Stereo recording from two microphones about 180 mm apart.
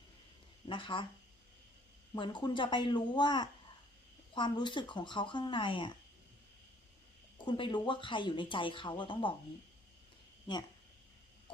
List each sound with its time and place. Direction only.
0.7 s speech: 30° left (ahead or behind)
2.1 s speech: 25° left (ahead or behind)
7.3 s speech: 25° left (ahead or behind)